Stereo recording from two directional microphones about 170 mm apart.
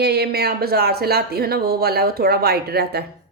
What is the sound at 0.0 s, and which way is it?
Speech, 70° right (ahead or behind).